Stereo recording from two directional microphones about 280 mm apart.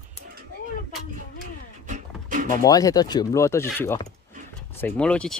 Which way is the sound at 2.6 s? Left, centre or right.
Centre.